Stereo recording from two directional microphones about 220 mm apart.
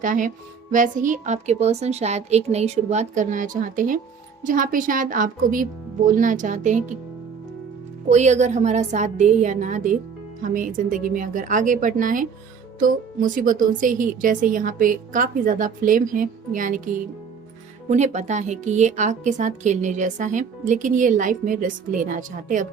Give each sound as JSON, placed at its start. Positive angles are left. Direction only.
{"t": 0.0, "sound": "speech", "side_deg": -35}
{"t": 8.1, "sound": "speech", "side_deg": -30}